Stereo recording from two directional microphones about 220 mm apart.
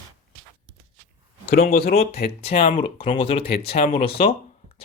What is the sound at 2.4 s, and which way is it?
Speech, 30° left (ahead or behind).